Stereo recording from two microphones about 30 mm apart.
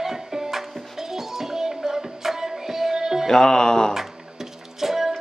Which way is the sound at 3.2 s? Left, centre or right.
Left.